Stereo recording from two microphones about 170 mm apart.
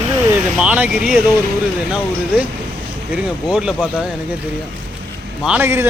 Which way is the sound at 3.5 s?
5° right (ahead or behind).